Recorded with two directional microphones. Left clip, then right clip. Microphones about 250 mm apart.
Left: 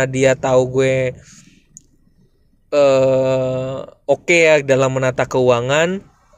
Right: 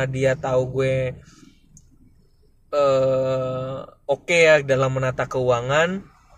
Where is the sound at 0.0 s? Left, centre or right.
Left.